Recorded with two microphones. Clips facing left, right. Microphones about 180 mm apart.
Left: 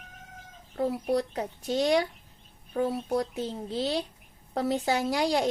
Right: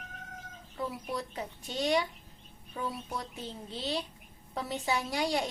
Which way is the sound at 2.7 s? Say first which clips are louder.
Left 10 dB; 50° left (ahead or behind).